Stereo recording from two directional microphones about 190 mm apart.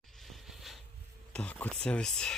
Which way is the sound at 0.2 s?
Centre (ahead or behind).